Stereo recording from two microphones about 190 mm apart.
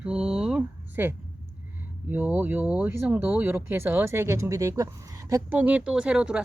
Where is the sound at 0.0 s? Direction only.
5° right (ahead or behind).